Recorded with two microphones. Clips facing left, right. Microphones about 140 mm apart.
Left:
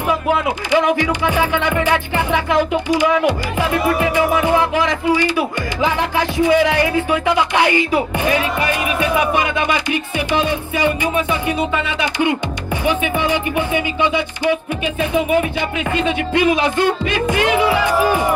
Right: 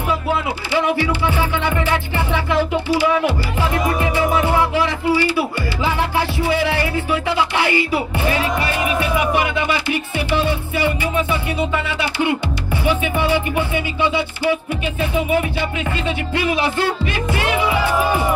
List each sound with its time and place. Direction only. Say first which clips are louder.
0.7 s music: left 3 dB; 15° left (ahead or behind)